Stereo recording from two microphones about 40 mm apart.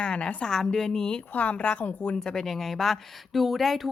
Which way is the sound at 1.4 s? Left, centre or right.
Left.